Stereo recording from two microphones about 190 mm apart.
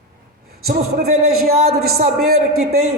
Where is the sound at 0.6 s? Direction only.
50° right (ahead or behind).